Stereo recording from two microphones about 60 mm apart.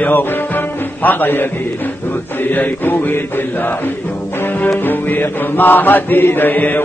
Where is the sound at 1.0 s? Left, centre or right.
Left.